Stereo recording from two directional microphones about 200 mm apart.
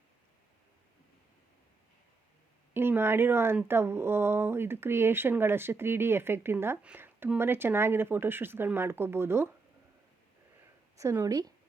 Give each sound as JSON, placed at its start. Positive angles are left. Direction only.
{"t": 2.7, "sound": "speech", "side_deg": -10}
{"t": 10.9, "sound": "a woman's voice", "side_deg": -15}